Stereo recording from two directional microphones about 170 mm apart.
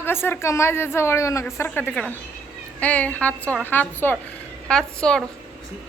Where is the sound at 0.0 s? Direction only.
15° left (ahead or behind).